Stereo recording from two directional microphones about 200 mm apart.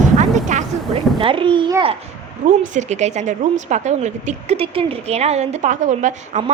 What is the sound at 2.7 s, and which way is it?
A woman's voice, 35° right (ahead or behind).